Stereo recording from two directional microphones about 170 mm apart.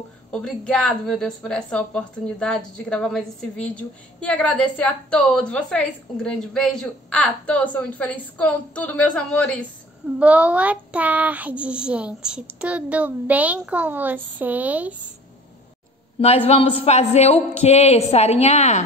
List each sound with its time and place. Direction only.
0.3 s a woman's voice: 5° left (ahead or behind)
10.1 s speech: 5° right (ahead or behind)
16.2 s speech: 35° left (ahead or behind)